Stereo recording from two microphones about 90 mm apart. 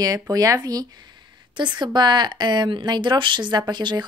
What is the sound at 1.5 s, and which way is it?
Speech, 55° right (ahead or behind).